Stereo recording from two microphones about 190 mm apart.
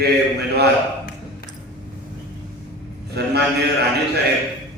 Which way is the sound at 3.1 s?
60° right (ahead or behind).